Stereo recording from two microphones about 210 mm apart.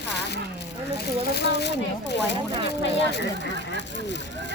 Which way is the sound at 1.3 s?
55° left (ahead or behind).